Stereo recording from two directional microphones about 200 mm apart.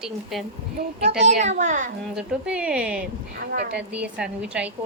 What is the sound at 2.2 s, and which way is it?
A woman's voice, 5° right (ahead or behind).